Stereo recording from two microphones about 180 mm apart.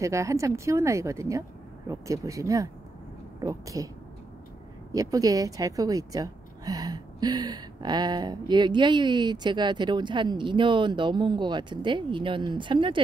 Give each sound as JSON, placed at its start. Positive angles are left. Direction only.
{"t": 0.0, "sound": "a woman's voice", "side_deg": -15}
{"t": 5.1, "sound": "a woman's voice", "side_deg": -20}